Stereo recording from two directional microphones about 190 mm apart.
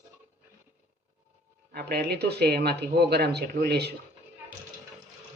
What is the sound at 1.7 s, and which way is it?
Speech, 55° right (ahead or behind).